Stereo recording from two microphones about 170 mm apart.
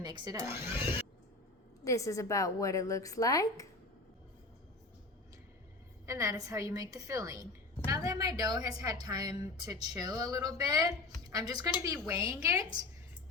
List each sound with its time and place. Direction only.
0.0 s a woman's voice: 25° right (ahead or behind)
1.8 s a woman's voice: 20° left (ahead or behind)
6.1 s a woman's voice: 20° right (ahead or behind)